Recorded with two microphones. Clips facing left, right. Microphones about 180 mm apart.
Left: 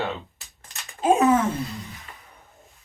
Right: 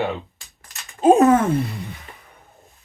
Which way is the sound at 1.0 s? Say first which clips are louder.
Right 6 dB; 40° right (ahead or behind).